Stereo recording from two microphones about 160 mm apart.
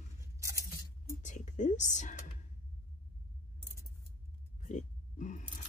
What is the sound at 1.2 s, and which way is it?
Whispering, 50° left (ahead or behind).